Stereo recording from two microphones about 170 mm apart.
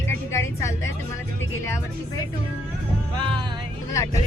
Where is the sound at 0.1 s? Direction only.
15° left (ahead or behind).